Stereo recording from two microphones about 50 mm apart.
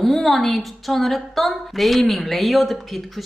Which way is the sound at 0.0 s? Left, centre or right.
Centre.